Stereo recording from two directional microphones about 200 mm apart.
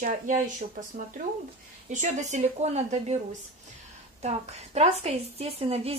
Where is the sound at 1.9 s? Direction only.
35° right (ahead or behind).